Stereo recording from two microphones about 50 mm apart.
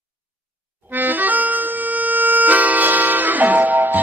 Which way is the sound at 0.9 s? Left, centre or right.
Right.